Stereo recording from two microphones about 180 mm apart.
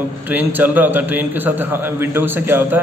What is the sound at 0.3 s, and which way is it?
A man's voice, 10° right (ahead or behind).